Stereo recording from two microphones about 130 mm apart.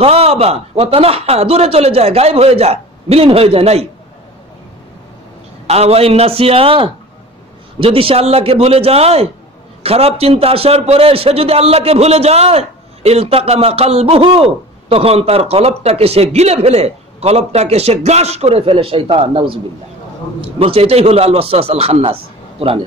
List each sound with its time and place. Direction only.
0.0 s a man's voice: 50° right (ahead or behind)
5.7 s a man's voice: 50° right (ahead or behind)